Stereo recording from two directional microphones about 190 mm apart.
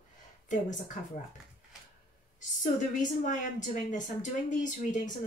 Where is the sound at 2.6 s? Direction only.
40° left (ahead or behind).